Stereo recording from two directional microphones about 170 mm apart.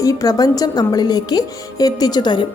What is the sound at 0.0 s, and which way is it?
Speech, 20° left (ahead or behind).